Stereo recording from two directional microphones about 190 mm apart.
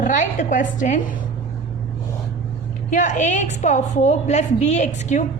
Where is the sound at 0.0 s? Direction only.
40° left (ahead or behind).